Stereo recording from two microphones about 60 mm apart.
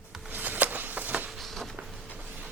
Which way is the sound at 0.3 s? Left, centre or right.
Right.